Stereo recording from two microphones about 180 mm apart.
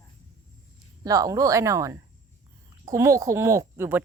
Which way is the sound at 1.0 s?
20° right (ahead or behind).